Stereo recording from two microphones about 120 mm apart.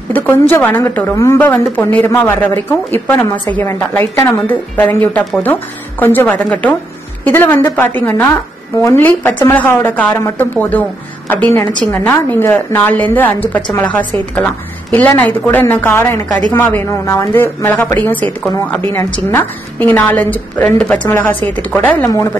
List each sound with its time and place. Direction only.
0.1 s a woman's voice: 15° left (ahead or behind)
22.0 s a woman's voice: 25° left (ahead or behind)